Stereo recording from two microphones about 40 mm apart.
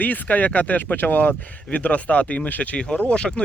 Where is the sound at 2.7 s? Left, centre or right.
Left.